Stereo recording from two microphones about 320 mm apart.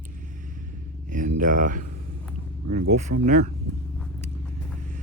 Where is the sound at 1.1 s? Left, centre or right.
Right.